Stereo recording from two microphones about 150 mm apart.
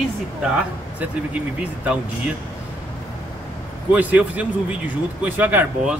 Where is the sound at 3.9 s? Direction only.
10° right (ahead or behind).